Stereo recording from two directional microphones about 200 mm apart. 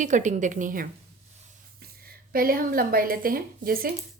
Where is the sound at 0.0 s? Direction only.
40° right (ahead or behind).